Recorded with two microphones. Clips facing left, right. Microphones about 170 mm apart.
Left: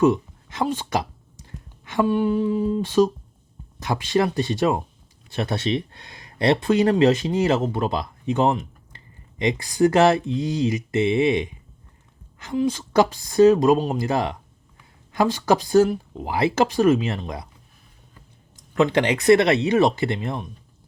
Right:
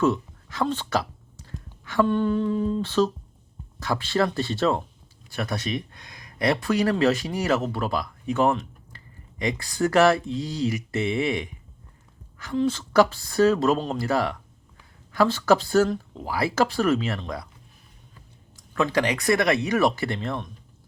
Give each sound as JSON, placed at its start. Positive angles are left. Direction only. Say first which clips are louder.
{"t": 0.0, "sound": "a sound", "louder": "left 4 dB", "side_deg": 15}
{"t": 2.0, "sound": "speech", "louder": "left 2 dB", "side_deg": 10}
{"t": 5.3, "sound": "speech", "louder": "left 5 dB", "side_deg": 25}
{"t": 18.7, "sound": "speech", "louder": "left 4 dB", "side_deg": 25}